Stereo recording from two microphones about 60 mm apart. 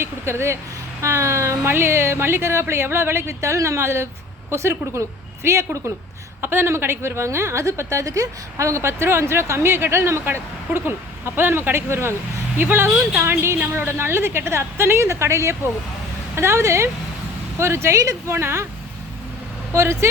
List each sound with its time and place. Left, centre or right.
0.0 s a woman's voice: right
6.4 s a woman's voice: right
18.3 s a woman's voice: right
19.7 s a woman's voice: right